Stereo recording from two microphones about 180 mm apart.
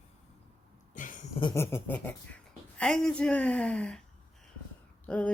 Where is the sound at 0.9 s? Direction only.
45° left (ahead or behind).